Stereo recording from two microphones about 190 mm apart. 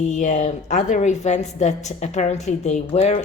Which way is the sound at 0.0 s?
40° left (ahead or behind).